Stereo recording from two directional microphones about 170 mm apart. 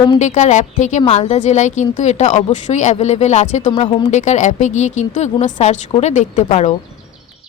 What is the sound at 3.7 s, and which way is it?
Speech, 30° left (ahead or behind).